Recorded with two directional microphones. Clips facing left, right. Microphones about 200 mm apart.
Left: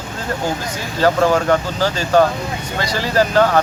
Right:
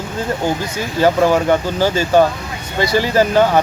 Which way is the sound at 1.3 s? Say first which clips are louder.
Right 1 dB; 10° right (ahead or behind).